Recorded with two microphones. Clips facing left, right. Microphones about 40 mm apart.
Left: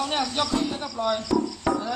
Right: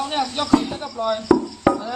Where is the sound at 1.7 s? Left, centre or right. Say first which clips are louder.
Right 8 dB; right.